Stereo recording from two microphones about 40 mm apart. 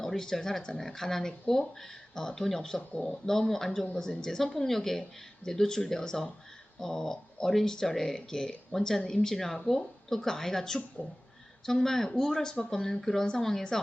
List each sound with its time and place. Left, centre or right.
0.0 s speech: centre
11.0 s speech: left
11.6 s speech: centre